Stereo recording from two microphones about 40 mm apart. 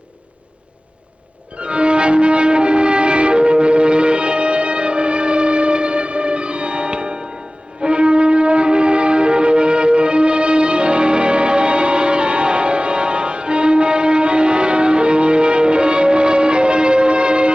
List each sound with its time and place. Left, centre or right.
1.5 s music: right